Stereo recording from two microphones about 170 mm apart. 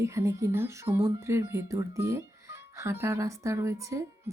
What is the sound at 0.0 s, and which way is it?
Speech, 15° right (ahead or behind).